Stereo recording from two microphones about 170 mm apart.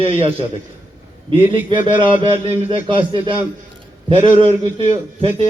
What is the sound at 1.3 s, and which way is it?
A man's voice, 30° right (ahead or behind).